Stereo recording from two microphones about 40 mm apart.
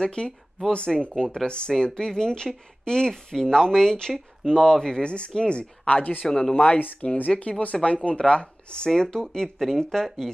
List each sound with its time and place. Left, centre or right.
0.0 s speech: left
5.0 s speech: left
6.2 s speech: centre
6.5 s speech: left; by 10.1 s centre